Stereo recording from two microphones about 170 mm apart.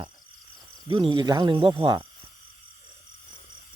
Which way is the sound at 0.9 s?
30° right (ahead or behind).